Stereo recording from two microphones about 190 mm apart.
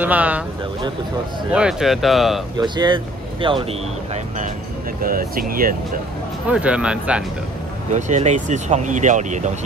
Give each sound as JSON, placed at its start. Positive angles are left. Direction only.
{"t": 0.0, "sound": "speech", "side_deg": -10}
{"t": 1.5, "sound": "speech", "side_deg": -5}
{"t": 2.5, "sound": "speech", "side_deg": -25}
{"t": 5.0, "sound": "speech", "side_deg": -50}
{"t": 6.4, "sound": "speech", "side_deg": -5}
{"t": 7.9, "sound": "speech", "side_deg": -40}